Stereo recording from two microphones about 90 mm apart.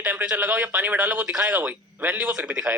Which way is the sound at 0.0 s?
15° right (ahead or behind).